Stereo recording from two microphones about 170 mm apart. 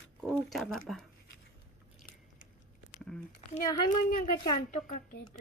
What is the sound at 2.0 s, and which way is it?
Biting, 50° left (ahead or behind).